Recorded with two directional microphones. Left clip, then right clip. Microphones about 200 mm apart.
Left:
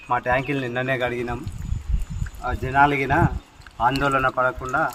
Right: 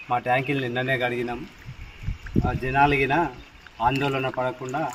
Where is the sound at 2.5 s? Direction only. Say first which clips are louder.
Left 3 dB; centre (ahead or behind).